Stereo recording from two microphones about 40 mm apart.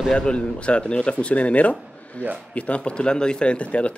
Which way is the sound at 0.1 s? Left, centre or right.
Left.